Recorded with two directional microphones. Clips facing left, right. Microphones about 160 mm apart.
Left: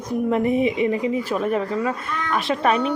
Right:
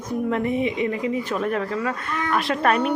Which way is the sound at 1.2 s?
5° left (ahead or behind).